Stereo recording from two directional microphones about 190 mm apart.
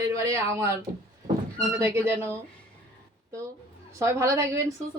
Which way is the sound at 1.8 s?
10° right (ahead or behind).